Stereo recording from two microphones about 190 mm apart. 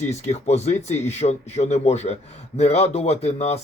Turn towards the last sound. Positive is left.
turn(degrees=35)  # may be behind; listen again after turning